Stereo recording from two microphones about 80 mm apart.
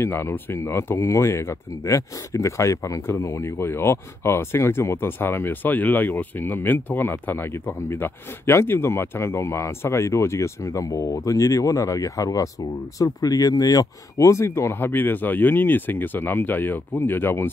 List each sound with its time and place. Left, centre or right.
0.0 s speech: left